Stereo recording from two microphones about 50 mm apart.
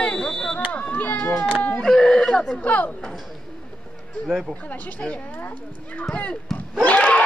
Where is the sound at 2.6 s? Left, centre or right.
Left.